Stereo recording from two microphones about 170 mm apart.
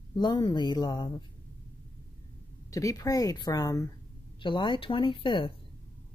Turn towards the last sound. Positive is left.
turn(degrees=30)  # may be behind; listen again after turning